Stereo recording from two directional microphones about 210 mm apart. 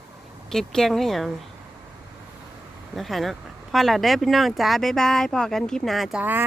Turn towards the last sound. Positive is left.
turn(degrees=-5)  # may be behind; listen again after turning